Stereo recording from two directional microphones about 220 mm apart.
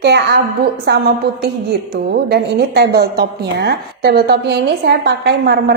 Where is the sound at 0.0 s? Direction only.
50° right (ahead or behind).